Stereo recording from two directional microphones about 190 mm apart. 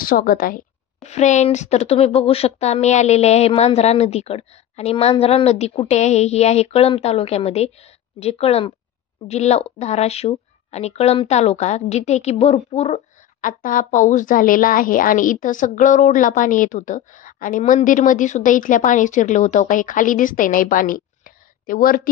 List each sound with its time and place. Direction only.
0.0 s speech: 50° left (ahead or behind)
1.0 s speech: 35° left (ahead or behind)